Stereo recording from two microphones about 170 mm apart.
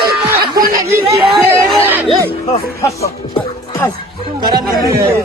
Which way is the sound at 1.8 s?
10° right (ahead or behind).